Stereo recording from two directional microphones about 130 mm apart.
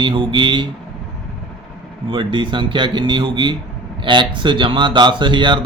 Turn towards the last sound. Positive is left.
turn(degrees=-40)  # may be behind; listen again after turning